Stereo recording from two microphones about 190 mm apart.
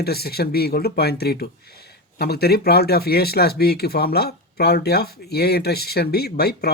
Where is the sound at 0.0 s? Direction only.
55° left (ahead or behind).